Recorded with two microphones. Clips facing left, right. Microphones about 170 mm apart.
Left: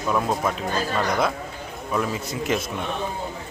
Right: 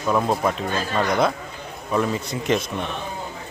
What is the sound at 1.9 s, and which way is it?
Speech, 5° left (ahead or behind).